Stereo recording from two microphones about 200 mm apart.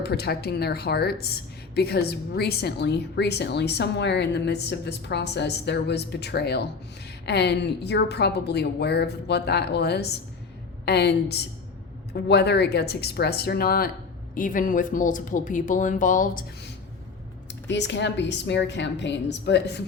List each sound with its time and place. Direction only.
0.0 s a woman's voice: 55° left (ahead or behind)
17.5 s a woman's voice: 60° left (ahead or behind)